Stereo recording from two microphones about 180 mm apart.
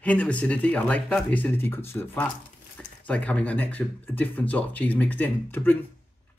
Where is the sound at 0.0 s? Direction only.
5° left (ahead or behind).